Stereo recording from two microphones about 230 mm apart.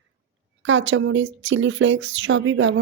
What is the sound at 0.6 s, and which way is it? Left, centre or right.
Speech, right.